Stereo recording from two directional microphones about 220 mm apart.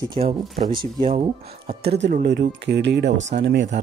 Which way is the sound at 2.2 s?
50° right (ahead or behind).